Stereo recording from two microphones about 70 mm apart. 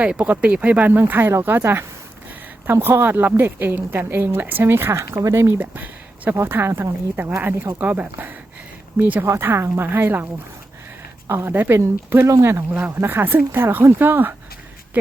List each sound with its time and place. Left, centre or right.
0.0 s a woman's voice: centre; by 5.5 s right
5.5 s speech: right
6.3 s a woman's voice: right
9.2 s a woman's voice: right
11.4 s a woman's voice: right